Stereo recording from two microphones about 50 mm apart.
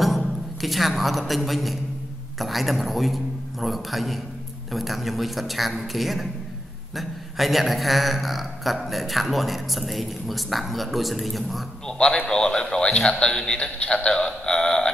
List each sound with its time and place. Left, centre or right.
0.0 s a man's voice: centre
12.3 s a man's voice: centre